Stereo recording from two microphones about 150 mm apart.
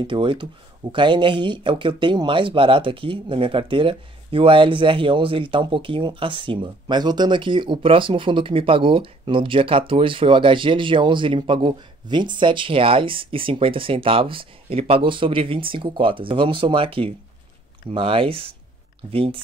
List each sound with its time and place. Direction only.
0.0 s speech: 35° right (ahead or behind)